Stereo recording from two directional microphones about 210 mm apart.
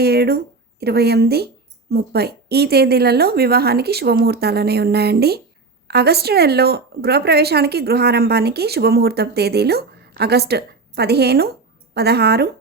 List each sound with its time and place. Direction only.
0.0 s a woman's voice: 50° right (ahead or behind)